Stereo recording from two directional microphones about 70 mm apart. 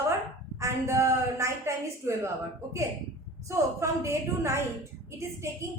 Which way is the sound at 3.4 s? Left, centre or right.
Right.